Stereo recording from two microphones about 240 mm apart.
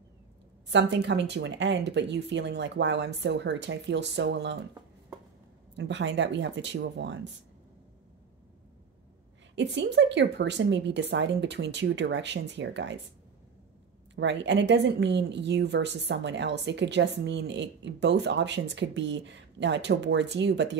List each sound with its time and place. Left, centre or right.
0.7 s a woman's voice: right
5.8 s a woman's voice: right
9.6 s a woman's voice: right
14.1 s a woman's voice: right